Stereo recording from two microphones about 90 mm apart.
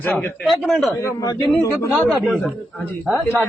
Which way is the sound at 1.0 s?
40° left (ahead or behind).